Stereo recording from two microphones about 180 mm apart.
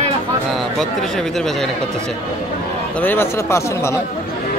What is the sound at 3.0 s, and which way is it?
Speech, 10° left (ahead or behind).